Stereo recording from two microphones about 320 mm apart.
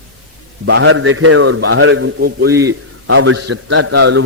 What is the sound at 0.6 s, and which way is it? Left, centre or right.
A man's voice, right.